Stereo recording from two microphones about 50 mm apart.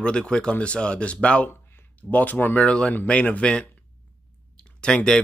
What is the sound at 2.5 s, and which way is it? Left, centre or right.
Speech, left.